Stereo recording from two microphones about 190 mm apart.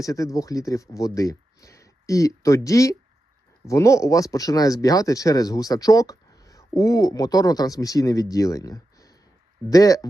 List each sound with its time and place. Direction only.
0.0 s speech: 15° left (ahead or behind)